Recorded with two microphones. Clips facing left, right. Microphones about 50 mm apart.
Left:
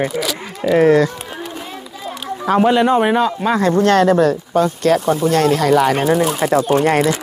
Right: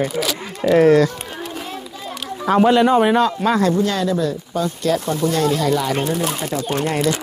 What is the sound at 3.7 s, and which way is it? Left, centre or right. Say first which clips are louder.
Speech: left 7 dB; left.